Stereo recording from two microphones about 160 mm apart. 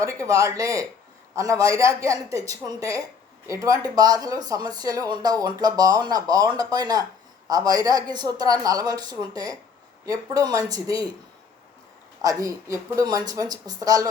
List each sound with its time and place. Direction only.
0.0 s speech: 20° right (ahead or behind)
12.2 s speech: 20° right (ahead or behind)